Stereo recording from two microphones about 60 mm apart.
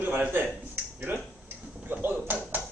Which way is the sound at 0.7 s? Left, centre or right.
Right.